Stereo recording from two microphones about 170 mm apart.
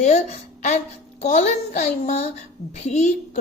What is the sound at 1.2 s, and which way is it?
A woman's voice, 45° left (ahead or behind).